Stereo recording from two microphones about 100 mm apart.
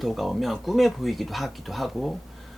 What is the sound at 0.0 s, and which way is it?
Speech, centre (ahead or behind).